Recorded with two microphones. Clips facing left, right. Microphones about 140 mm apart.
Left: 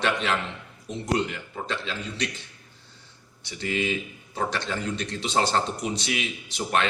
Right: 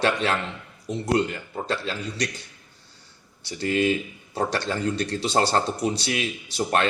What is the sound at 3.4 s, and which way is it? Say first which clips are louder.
Speech: right 5 dB; 35° right (ahead or behind).